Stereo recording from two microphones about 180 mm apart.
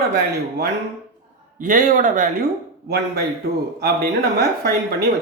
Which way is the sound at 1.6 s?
45° right (ahead or behind).